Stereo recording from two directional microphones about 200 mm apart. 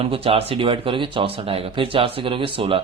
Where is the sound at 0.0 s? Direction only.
25° right (ahead or behind).